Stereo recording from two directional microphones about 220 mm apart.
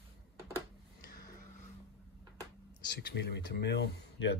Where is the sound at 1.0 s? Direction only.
45° left (ahead or behind).